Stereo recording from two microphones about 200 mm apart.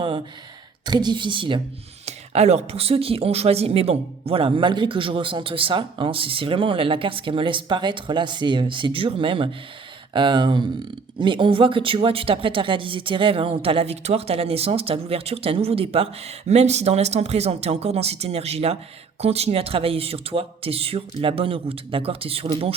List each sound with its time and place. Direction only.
0.9 s speech: 20° right (ahead or behind)